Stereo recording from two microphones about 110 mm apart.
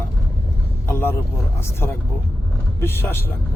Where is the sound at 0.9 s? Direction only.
20° left (ahead or behind).